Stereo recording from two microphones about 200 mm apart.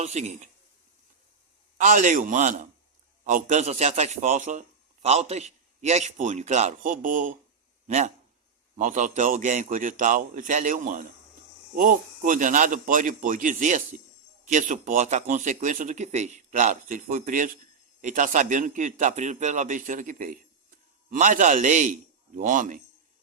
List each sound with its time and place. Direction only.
0.0 s speech: 35° right (ahead or behind)
1.8 s a man's voice: 40° right (ahead or behind)